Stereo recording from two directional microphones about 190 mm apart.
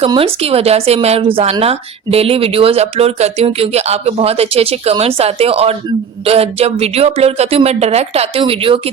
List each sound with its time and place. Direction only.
0.0 s speech: 30° right (ahead or behind)